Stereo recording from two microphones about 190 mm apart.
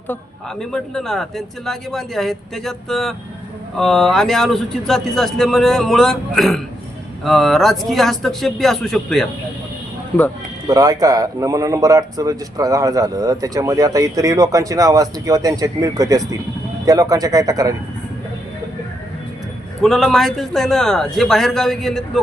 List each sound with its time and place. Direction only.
0.6 s a man's voice: centre (ahead or behind)
10.7 s speech: 20° right (ahead or behind)
19.8 s a man's voice: centre (ahead or behind)